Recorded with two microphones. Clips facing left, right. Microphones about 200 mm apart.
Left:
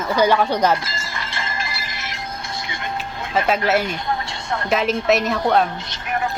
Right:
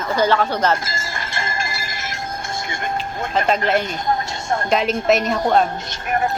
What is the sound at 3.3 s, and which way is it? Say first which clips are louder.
A woman's voice: even; 5° left (ahead or behind).